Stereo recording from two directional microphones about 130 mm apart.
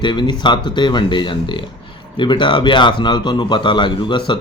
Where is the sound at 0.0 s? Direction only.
35° left (ahead or behind).